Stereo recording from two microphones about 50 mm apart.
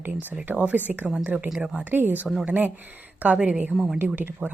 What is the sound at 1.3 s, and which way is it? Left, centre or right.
Speech, centre.